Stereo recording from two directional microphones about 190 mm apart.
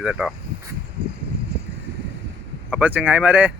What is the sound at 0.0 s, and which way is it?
Speech, 5° right (ahead or behind).